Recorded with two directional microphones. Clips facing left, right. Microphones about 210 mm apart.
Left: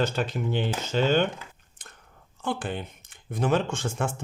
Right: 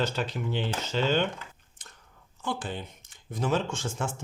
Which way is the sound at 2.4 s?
55° left (ahead or behind).